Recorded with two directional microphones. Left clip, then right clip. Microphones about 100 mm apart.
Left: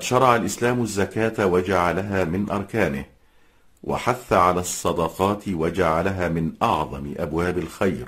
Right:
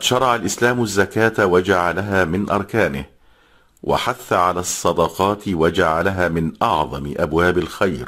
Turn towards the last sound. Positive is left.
turn(degrees=-30)  # may be behind; listen again after turning